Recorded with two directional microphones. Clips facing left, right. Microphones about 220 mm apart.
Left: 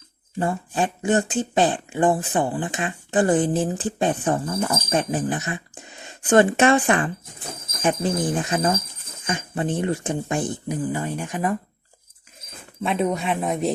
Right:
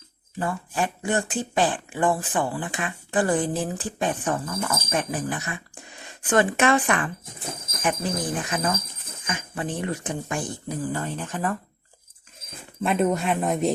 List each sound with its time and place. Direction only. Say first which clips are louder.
0.3 s speech: left 3 dB; 25° left (ahead or behind)
8.4 s speech: left 4 dB; 25° left (ahead or behind)
12.8 s speech: right 1 dB; centre (ahead or behind)